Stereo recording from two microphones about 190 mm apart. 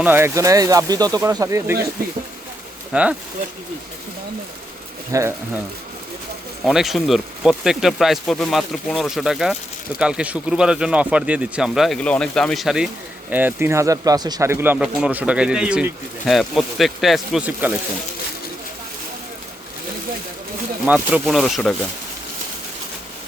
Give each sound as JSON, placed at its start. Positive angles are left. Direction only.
{"t": 0.0, "sound": "speech", "side_deg": -10}
{"t": 2.9, "sound": "speech", "side_deg": -5}
{"t": 5.1, "sound": "speech", "side_deg": -15}
{"t": 6.7, "sound": "speech", "side_deg": 0}
{"t": 20.8, "sound": "speech", "side_deg": -5}